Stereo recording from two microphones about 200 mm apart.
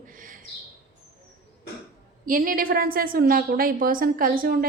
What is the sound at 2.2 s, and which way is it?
A woman's voice, 45° right (ahead or behind).